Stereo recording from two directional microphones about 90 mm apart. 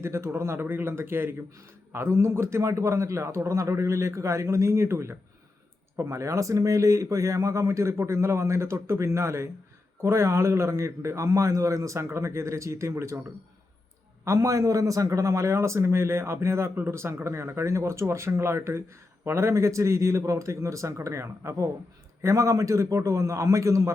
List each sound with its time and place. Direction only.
0.0 s a man's voice: 30° right (ahead or behind)
14.3 s a man's voice: 35° right (ahead or behind)